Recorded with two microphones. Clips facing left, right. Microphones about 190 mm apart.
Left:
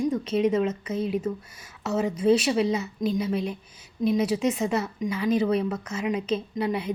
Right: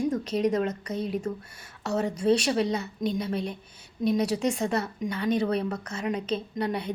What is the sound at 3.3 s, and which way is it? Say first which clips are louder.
Speech: left 3 dB; 35° right (ahead or behind).